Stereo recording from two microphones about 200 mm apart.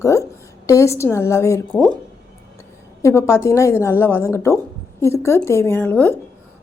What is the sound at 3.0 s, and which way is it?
A woman's voice, 15° left (ahead or behind).